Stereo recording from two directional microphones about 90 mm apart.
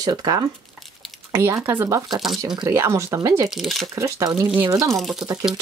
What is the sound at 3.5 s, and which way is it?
Speech, centre (ahead or behind).